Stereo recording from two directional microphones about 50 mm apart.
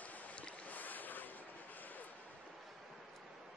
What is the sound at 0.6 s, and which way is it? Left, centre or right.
Boat, left.